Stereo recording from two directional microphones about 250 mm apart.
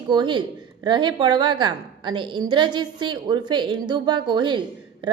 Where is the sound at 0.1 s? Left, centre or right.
Centre.